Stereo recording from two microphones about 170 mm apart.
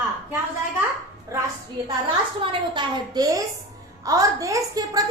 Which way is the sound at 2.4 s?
30° right (ahead or behind).